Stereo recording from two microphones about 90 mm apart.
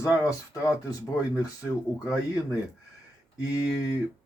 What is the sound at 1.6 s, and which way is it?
Speech, 35° left (ahead or behind).